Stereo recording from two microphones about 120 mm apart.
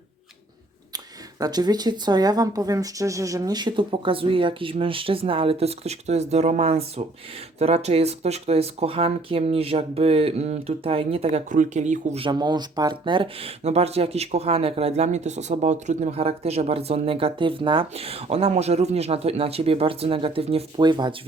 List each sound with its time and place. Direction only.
0.9 s speech: 35° right (ahead or behind); by 12.2 s 80° right
12.2 s speech: 35° right (ahead or behind); by 20.7 s 55° right (ahead or behind)
20.7 s speech: 40° right (ahead or behind)